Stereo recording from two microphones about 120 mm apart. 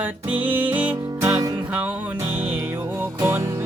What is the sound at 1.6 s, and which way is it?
Music, 10° right (ahead or behind).